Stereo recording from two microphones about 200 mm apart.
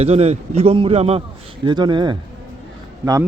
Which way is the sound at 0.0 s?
30° right (ahead or behind).